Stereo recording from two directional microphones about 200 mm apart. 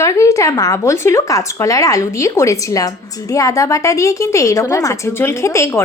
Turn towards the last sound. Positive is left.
turn(degrees=15)  # may be behind; listen again after turning